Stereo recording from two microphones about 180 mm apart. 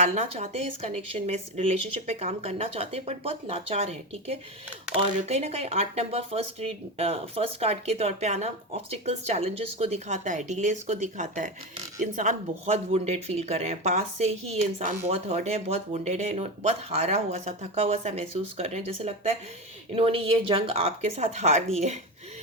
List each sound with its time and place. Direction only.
0.0 s speech: 40° right (ahead or behind)